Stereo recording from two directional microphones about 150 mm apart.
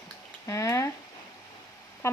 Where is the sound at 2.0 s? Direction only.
20° left (ahead or behind).